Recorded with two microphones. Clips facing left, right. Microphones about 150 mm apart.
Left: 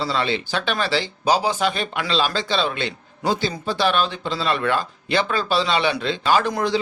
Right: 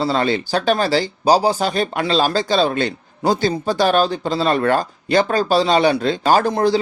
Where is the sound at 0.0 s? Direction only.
45° right (ahead or behind).